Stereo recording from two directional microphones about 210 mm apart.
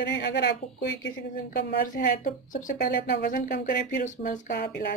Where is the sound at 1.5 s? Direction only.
40° left (ahead or behind).